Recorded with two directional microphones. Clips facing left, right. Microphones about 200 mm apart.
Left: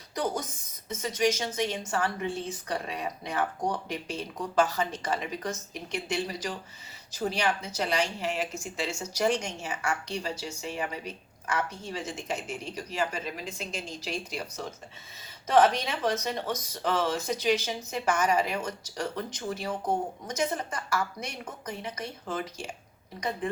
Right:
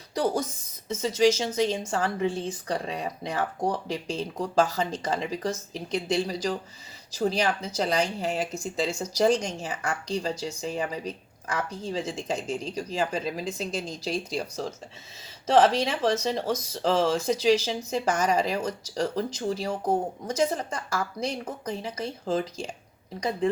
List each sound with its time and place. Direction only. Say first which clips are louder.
0.1 s speech: right 5 dB; 30° right (ahead or behind)